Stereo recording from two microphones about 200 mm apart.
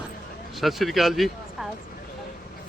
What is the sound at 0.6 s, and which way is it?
A man's voice, centre (ahead or behind).